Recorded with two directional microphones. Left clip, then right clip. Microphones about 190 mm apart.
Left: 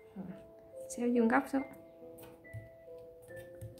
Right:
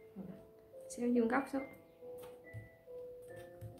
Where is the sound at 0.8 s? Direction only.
25° left (ahead or behind).